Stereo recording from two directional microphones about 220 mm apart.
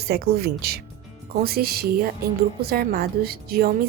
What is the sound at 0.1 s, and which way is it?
A woman's voice, 45° right (ahead or behind).